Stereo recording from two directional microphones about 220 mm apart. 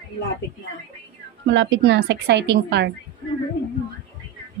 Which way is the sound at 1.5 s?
55° right (ahead or behind).